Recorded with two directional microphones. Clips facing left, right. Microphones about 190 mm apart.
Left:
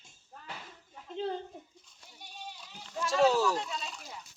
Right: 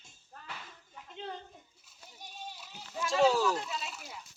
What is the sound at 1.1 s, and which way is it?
Speech, 35° left (ahead or behind).